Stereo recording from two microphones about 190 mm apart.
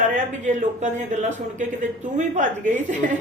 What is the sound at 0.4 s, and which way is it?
Speech, 40° right (ahead or behind).